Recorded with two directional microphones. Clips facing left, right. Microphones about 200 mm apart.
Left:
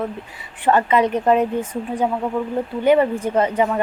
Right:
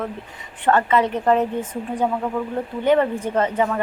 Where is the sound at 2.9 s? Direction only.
10° left (ahead or behind).